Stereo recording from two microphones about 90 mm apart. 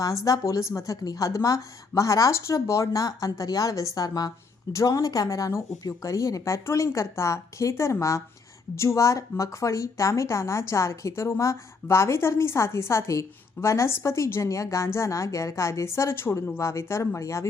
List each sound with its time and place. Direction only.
0.3 s speech: 35° left (ahead or behind)